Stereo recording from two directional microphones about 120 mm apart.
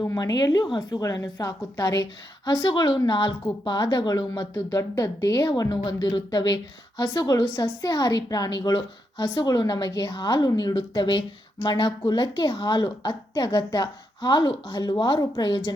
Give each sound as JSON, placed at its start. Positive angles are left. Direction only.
{"t": 0.0, "sound": "speech", "side_deg": 30}